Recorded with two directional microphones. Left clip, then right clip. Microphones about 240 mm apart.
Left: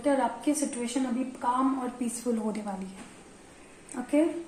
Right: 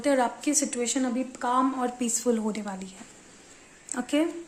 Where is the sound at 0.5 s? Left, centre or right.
Right.